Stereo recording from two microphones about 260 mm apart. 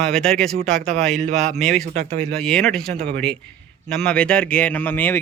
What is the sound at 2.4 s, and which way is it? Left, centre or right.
A man's voice, centre.